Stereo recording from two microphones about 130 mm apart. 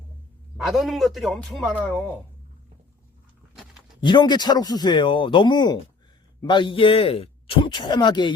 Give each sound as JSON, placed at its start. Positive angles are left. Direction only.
{"t": 0.5, "sound": "a man's voice", "side_deg": 0}
{"t": 4.0, "sound": "speech", "side_deg": 35}